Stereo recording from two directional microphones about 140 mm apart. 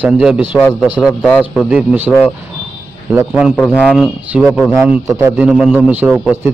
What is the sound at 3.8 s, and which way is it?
Speech, 5° left (ahead or behind).